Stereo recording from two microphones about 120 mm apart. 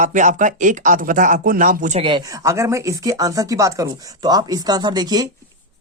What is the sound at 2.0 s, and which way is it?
Speech, 45° right (ahead or behind).